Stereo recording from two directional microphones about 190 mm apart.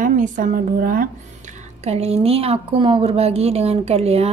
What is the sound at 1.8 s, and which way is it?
A woman's voice, 35° right (ahead or behind).